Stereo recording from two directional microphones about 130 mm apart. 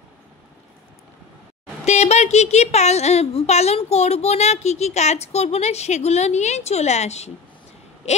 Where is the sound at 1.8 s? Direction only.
55° left (ahead or behind).